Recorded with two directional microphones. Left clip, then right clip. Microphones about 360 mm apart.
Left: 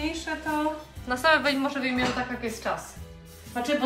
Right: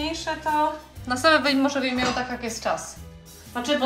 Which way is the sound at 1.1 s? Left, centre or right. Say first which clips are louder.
Right 3 dB; centre.